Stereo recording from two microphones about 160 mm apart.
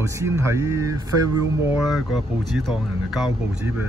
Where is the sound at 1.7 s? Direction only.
Centre (ahead or behind).